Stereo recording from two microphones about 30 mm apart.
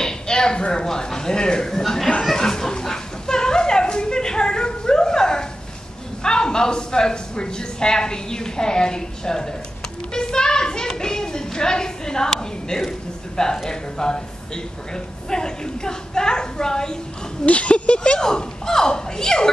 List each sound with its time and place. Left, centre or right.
0.0 s a sound: left
0.8 s speech: centre
1.7 s speech: centre
2.3 s a sound: centre
6.2 s speech: left
10.1 s a sound: left
13.7 s speech: left
17.5 s speech: left
18.2 s speech: centre